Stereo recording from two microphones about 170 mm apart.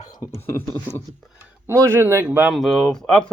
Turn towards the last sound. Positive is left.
turn(degrees=5)  # may be behind; listen again after turning